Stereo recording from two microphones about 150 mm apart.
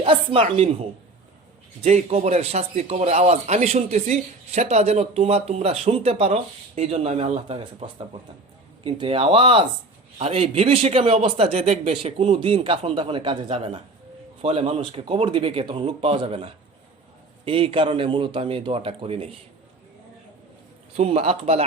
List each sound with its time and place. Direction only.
0.0 s a man's voice: 35° right (ahead or behind)
20.9 s a man's voice: 40° right (ahead or behind)